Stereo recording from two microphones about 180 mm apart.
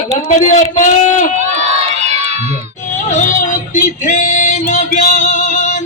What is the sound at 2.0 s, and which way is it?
Crowd, 35° right (ahead or behind).